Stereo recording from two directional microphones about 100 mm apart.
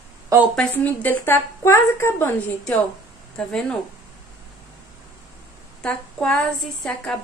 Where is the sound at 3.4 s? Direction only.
10° left (ahead or behind).